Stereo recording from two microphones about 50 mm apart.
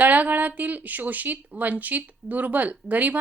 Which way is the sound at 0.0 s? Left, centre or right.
Right.